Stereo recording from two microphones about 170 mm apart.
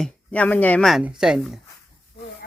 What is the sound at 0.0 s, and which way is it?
Speech, 10° left (ahead or behind).